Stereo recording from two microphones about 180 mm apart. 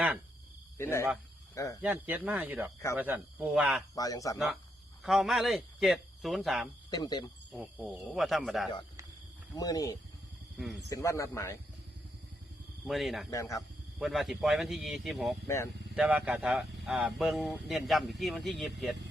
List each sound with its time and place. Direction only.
0.8 s speech: 15° left (ahead or behind)
1.8 s speech: 10° right (ahead or behind)
3.9 s speech: 20° left (ahead or behind)
5.0 s speech: centre (ahead or behind)
6.9 s speech: 20° left (ahead or behind)
7.5 s speech: centre (ahead or behind)
9.6 s speech: 20° left (ahead or behind)
12.9 s speech: centre (ahead or behind)
13.3 s speech: 20° left (ahead or behind)
14.0 s speech: centre (ahead or behind)
15.4 s speech: 15° left (ahead or behind)
16.0 s speech: 5° right (ahead or behind)